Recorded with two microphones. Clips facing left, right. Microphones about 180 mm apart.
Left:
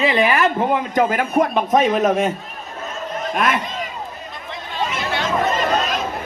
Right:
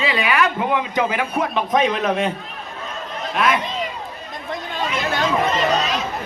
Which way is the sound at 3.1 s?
45° left (ahead or behind).